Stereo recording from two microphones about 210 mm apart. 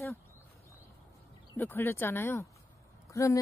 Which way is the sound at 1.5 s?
10° left (ahead or behind).